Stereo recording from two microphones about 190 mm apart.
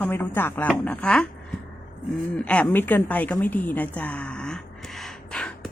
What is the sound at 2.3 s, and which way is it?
A woman's voice, 5° left (ahead or behind).